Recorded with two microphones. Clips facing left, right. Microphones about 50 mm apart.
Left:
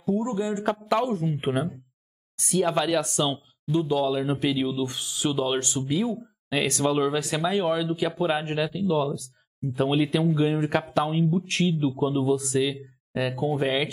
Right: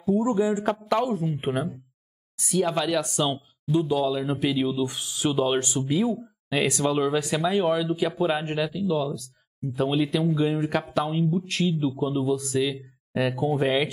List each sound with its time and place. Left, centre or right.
0.1 s speech: centre
0.7 s speech: centre
8.8 s speech: centre
12.5 s speech: centre